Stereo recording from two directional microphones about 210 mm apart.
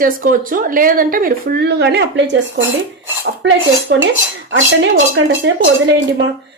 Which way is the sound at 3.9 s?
55° right (ahead or behind).